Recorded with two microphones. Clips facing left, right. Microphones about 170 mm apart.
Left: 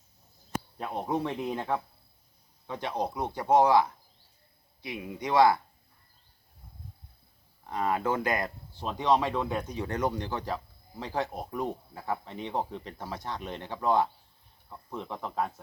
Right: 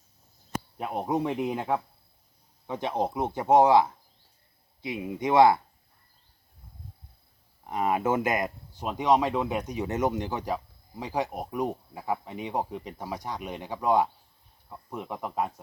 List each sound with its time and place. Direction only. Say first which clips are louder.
0.8 s speech: right 3 dB; 15° right (ahead or behind)
7.7 s speech: right 3 dB; 20° right (ahead or behind)